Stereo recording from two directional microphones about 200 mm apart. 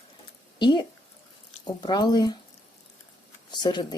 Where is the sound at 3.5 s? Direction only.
20° left (ahead or behind).